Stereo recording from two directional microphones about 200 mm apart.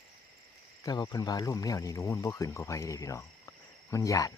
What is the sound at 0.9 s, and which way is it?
Speech, 20° left (ahead or behind).